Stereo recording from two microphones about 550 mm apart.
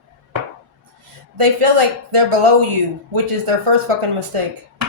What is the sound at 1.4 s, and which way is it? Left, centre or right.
Speech, right.